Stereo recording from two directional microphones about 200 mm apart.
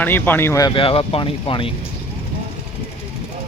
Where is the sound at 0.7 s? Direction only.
25° left (ahead or behind).